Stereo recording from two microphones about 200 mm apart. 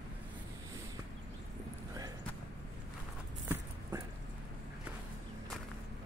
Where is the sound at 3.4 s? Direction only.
15° right (ahead or behind).